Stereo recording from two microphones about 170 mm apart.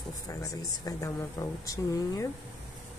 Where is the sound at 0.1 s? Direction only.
20° left (ahead or behind).